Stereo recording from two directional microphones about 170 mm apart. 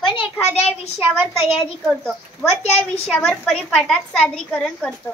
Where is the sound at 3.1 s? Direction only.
Centre (ahead or behind).